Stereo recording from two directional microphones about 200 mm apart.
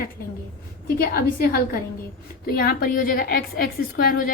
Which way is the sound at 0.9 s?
50° left (ahead or behind).